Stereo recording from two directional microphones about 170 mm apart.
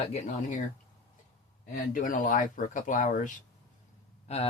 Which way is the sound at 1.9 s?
50° left (ahead or behind).